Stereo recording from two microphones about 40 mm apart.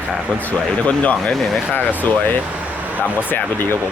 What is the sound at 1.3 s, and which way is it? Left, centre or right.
Speech, centre.